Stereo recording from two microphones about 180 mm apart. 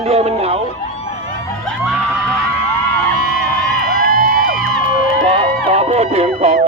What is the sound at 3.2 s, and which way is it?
Crowd, 50° left (ahead or behind).